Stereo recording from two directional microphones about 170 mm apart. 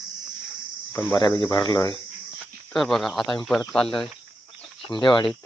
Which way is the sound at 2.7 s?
Centre (ahead or behind).